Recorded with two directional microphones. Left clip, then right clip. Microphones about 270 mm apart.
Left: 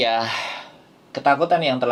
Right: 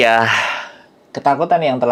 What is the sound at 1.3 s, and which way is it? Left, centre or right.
Speech, right.